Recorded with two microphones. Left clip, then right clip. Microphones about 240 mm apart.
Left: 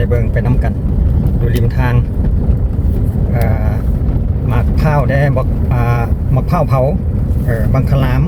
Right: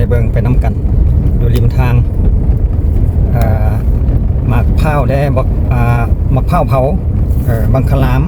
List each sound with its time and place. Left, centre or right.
0.0 s vehicle: right
4.5 s vehicle: right
6.5 s speech: right